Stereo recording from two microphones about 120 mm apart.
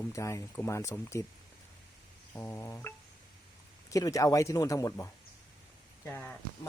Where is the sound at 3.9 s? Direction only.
30° left (ahead or behind).